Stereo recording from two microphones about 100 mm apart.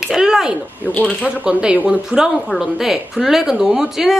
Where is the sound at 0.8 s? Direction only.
15° left (ahead or behind).